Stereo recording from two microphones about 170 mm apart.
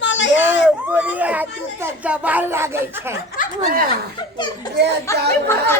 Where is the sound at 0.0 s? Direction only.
90° left.